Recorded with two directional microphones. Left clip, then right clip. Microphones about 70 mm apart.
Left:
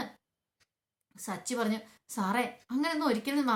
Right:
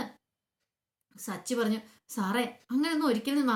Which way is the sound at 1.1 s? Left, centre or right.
Left.